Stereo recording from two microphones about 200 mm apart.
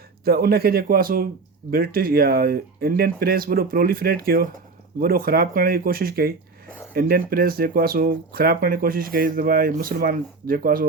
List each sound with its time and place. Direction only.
0.3 s speech: 50° right (ahead or behind)